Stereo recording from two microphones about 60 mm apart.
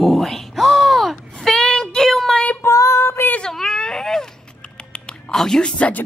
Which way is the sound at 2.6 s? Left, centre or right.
Left.